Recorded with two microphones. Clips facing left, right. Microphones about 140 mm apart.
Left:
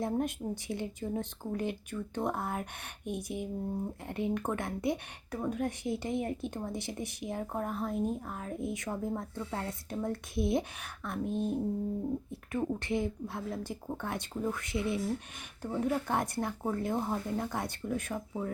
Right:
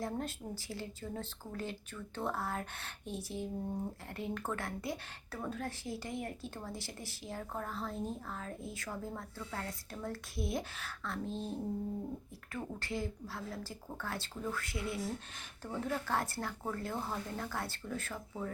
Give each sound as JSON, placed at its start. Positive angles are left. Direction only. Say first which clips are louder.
{"t": 0.0, "sound": "speech", "louder": "left 7 dB", "side_deg": 20}